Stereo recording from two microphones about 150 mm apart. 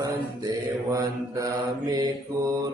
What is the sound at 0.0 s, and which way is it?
Mantra, 20° right (ahead or behind).